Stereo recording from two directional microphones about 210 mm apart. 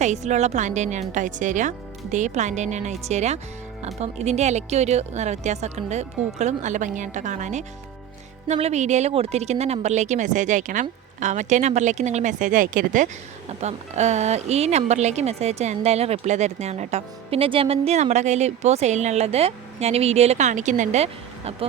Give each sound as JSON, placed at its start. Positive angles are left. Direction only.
{"t": 0.0, "sound": "speech", "side_deg": -35}